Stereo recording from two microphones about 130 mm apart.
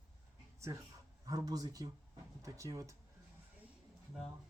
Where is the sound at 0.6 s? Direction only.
20° right (ahead or behind).